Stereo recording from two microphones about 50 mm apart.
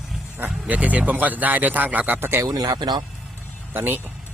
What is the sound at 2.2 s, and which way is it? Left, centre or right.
Speech, right.